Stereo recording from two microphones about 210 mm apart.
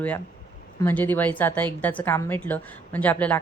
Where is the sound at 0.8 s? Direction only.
10° left (ahead or behind).